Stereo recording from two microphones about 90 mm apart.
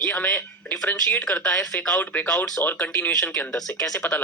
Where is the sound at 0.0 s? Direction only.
15° left (ahead or behind).